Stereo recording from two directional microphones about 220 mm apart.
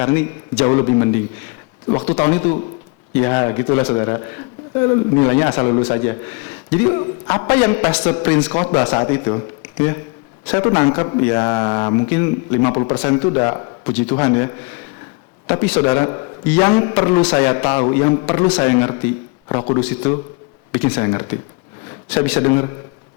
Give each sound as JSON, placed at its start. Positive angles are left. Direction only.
{"t": 0.0, "sound": "a man's voice", "side_deg": 15}
{"t": 9.0, "sound": "a man's voice", "side_deg": 20}
{"t": 12.7, "sound": "a man's voice", "side_deg": 30}
{"t": 15.9, "sound": "a man's voice", "side_deg": 20}